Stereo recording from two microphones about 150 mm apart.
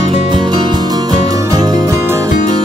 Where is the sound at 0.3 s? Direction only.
30° right (ahead or behind).